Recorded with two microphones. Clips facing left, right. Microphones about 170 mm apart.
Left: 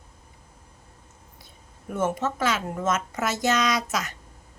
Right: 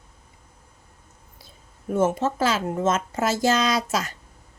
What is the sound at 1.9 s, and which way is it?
A woman's voice, 30° right (ahead or behind).